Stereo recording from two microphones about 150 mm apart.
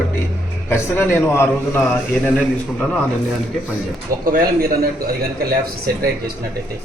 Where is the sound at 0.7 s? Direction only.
15° left (ahead or behind).